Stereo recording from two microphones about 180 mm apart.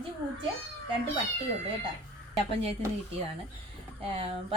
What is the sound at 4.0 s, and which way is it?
Speech, 30° right (ahead or behind).